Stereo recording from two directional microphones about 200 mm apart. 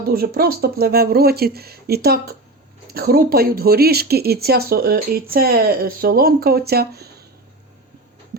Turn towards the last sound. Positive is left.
turn(degrees=-55)  # may be behind; listen again after turning